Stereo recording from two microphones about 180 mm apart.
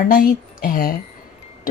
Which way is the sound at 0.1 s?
55° left (ahead or behind).